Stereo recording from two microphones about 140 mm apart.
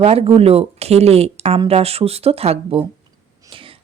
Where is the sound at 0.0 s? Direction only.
45° right (ahead or behind).